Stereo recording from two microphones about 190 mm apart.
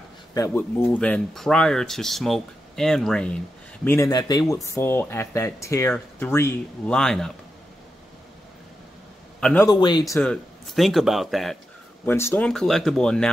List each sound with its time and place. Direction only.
0.3 s speech: 15° left (ahead or behind)
9.4 s a man's voice: 5° left (ahead or behind)
9.7 s speech: 25° left (ahead or behind)
10.2 s speech: centre (ahead or behind)
12.1 s speech: 10° left (ahead or behind)